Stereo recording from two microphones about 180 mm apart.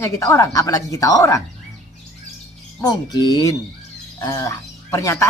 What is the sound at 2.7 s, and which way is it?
Speech, 20° left (ahead or behind).